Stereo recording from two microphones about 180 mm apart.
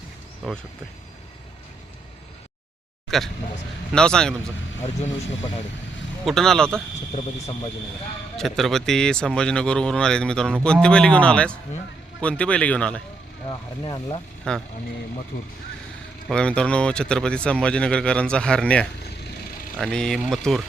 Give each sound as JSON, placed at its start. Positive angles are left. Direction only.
{"t": 0.4, "sound": "speech", "side_deg": 0}
{"t": 3.1, "sound": "speech", "side_deg": 0}
{"t": 6.2, "sound": "speech", "side_deg": 0}
{"t": 8.4, "sound": "speech", "side_deg": 0}
{"t": 13.5, "sound": "speech", "side_deg": 25}
{"t": 14.5, "sound": "speech", "side_deg": 5}
{"t": 16.3, "sound": "speech", "side_deg": 5}